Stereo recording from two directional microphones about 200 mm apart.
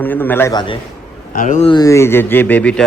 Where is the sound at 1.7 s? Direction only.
15° left (ahead or behind).